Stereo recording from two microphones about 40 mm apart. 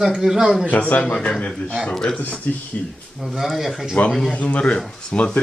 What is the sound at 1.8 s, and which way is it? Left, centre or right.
Speech, centre.